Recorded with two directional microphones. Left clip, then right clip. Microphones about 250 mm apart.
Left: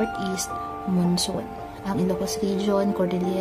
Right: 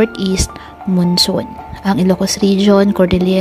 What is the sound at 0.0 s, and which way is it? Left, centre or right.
A woman's voice, right.